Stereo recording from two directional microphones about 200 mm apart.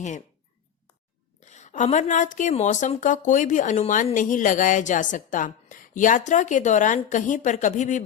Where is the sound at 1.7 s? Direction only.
35° left (ahead or behind).